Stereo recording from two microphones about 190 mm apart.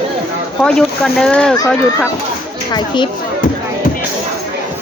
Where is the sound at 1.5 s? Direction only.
15° left (ahead or behind).